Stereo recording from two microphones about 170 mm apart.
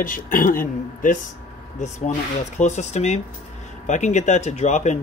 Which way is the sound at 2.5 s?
45° left (ahead or behind).